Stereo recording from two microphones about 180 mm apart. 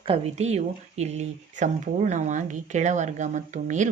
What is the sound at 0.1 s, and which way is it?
Speech, 35° right (ahead or behind).